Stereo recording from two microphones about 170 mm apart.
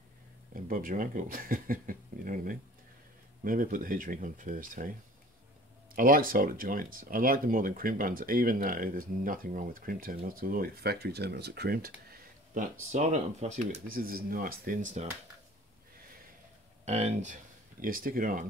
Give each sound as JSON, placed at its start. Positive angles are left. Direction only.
{"t": 0.7, "sound": "speech", "side_deg": -55}
{"t": 5.9, "sound": "speech", "side_deg": -55}
{"t": 12.9, "sound": "speech", "side_deg": -40}
{"t": 13.8, "sound": "speech", "side_deg": -60}
{"t": 16.8, "sound": "speech", "side_deg": -40}